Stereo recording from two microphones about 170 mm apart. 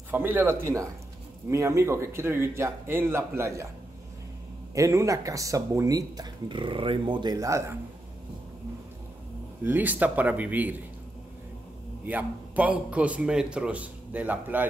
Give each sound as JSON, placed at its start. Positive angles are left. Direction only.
{"t": 0.1, "sound": "a man's voice", "side_deg": -10}
{"t": 4.7, "sound": "speech", "side_deg": -20}
{"t": 9.6, "sound": "a man's voice", "side_deg": -10}
{"t": 12.1, "sound": "a man's voice", "side_deg": -10}